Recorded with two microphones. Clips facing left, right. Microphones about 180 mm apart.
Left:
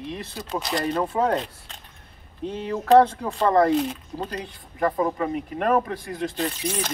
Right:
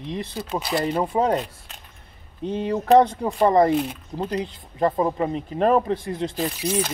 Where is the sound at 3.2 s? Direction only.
15° right (ahead or behind).